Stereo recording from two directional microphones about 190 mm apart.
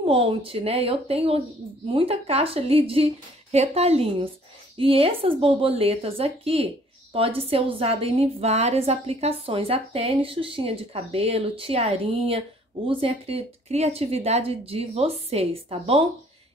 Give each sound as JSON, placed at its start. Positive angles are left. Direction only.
{"t": 0.0, "sound": "a woman's voice", "side_deg": -30}